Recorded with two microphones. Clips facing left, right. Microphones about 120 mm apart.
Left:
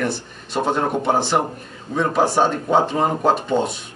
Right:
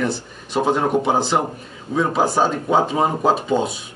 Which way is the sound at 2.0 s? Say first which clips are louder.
Even; 5° right (ahead or behind).